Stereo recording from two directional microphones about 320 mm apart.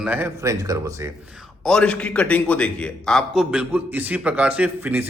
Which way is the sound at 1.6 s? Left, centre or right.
Centre.